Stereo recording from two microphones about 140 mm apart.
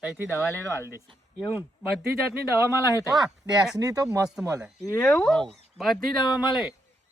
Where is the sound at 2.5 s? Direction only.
20° right (ahead or behind).